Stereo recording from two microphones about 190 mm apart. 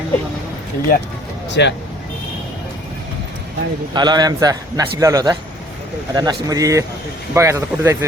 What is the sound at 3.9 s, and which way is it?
A man's voice, 20° right (ahead or behind).